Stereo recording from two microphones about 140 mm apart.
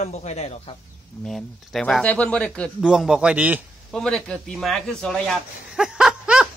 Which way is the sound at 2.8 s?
5° right (ahead or behind).